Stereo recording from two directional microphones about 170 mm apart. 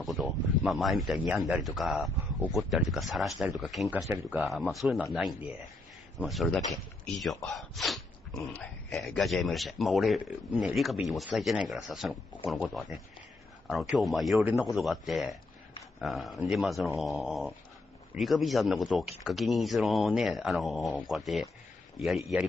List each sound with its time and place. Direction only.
0.0 s speech: centre (ahead or behind)